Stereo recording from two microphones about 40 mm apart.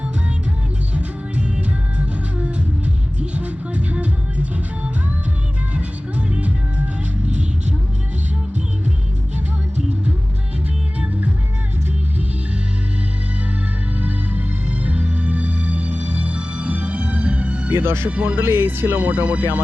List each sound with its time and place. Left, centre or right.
0.9 s music: right
5.7 s music: right
14.0 s music: right
17.7 s music: right
18.1 s speech: right
18.4 s speech: right
19.2 s speech: right